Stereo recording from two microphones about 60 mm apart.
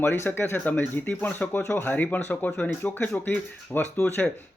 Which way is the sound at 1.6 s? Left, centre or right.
Left.